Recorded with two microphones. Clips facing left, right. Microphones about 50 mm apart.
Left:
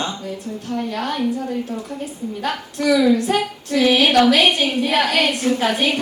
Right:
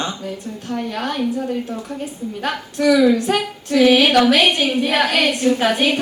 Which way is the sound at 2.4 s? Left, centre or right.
Right.